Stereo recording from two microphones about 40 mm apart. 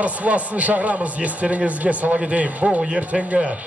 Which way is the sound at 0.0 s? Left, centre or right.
Right.